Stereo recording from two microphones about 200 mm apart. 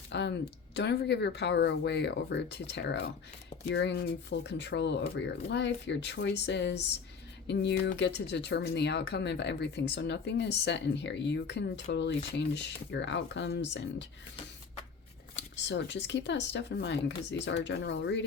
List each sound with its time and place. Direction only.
0.1 s speech: 60° left (ahead or behind)
15.6 s speech: 60° left (ahead or behind)